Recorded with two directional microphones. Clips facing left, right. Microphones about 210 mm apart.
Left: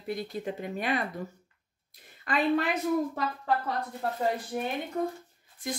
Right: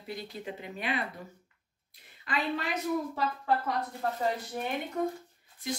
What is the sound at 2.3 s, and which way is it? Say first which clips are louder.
Speech: left 4 dB; 50° left (ahead or behind).